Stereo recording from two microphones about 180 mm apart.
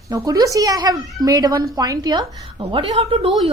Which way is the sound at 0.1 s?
20° right (ahead or behind).